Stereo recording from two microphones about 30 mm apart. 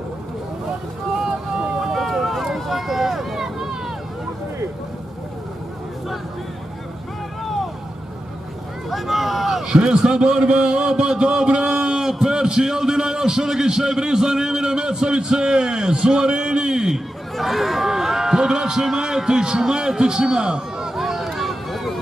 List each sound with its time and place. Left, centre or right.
1.2 s boat: centre
2.0 s run: centre
8.9 s vehicle: centre
9.7 s a sound: right
12.0 s a sound: centre
17.4 s run: centre; by 18.9 s right
18.9 s a sound: right
20.0 s a man's voice: right
20.9 s run: centre